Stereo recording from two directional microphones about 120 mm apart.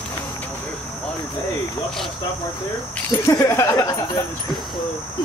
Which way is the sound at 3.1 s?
25° left (ahead or behind).